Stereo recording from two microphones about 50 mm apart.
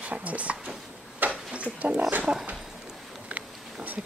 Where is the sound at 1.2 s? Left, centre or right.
Right.